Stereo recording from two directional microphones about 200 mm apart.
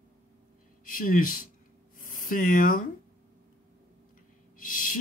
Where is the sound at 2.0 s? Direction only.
45° left (ahead or behind).